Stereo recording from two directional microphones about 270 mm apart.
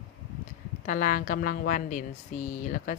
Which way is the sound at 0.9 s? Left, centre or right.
Left.